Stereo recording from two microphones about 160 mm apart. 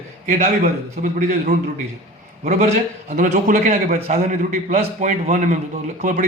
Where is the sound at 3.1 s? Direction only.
55° right (ahead or behind).